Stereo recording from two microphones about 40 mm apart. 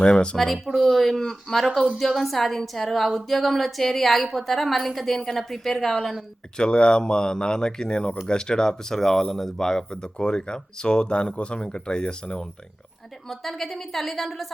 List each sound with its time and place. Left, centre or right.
0.0 s speech: left
0.3 s a woman's voice: centre
6.6 s speech: left
13.2 s a woman's voice: centre